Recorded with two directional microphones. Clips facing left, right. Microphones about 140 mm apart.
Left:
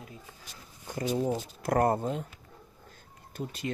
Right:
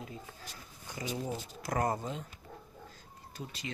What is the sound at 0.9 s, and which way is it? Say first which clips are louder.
Speech: left 8 dB; 50° left (ahead or behind).